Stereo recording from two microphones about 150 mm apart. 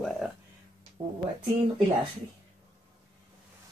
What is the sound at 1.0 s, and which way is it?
Speech, 35° right (ahead or behind).